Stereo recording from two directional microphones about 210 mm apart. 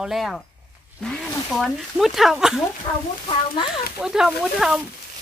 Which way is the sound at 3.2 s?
20° left (ahead or behind).